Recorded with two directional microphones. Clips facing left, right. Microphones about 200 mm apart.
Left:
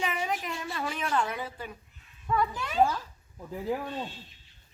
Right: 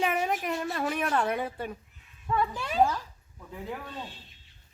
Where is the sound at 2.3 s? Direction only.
30° right (ahead or behind).